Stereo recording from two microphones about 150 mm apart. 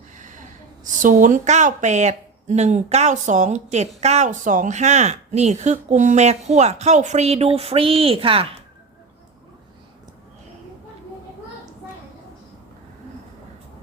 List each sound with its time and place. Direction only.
0.2 s gasp: 60° right (ahead or behind)
0.9 s speech: 60° right (ahead or behind); by 8.4 s 40° right (ahead or behind)